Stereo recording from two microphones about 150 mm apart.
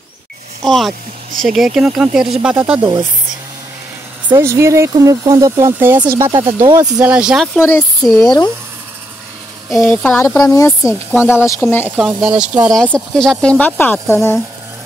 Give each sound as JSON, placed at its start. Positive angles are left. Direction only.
{"t": 0.7, "sound": "speech", "side_deg": 0}
{"t": 2.5, "sound": "speech", "side_deg": -15}
{"t": 4.4, "sound": "speech", "side_deg": -20}
{"t": 7.0, "sound": "speech", "side_deg": -5}
{"t": 7.5, "sound": "speech", "side_deg": 15}
{"t": 9.7, "sound": "speech", "side_deg": 15}
{"t": 11.9, "sound": "speech", "side_deg": -10}
{"t": 12.7, "sound": "speech", "side_deg": 5}